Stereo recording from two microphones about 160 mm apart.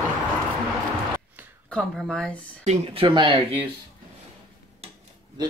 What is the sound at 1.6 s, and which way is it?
Speech, 5° left (ahead or behind).